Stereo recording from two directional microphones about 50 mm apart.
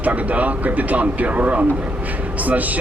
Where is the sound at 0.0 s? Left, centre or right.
Right.